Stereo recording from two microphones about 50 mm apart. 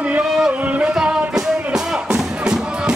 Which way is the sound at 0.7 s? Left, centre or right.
Right.